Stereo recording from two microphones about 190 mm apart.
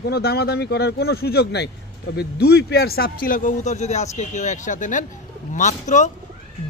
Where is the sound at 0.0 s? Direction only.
55° left (ahead or behind).